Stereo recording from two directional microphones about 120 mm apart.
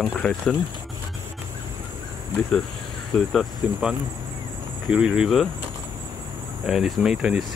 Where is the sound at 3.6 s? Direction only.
10° right (ahead or behind).